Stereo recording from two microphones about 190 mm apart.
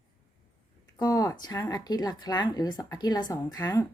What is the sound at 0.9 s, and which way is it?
A woman's voice, 20° left (ahead or behind).